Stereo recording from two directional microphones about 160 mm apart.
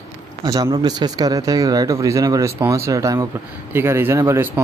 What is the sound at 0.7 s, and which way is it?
Speech, 25° right (ahead or behind).